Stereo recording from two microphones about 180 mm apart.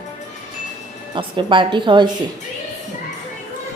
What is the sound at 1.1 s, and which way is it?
Speech, 25° right (ahead or behind).